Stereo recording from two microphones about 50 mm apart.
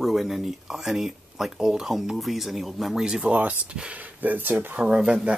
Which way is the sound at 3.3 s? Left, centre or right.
Right.